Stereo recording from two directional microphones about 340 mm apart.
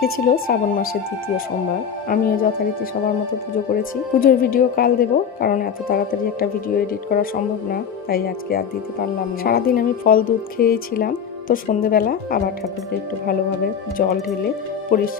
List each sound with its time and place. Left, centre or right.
0.0 s speech: left
2.0 s speech: left
4.2 s speech: left
13.9 s speech: left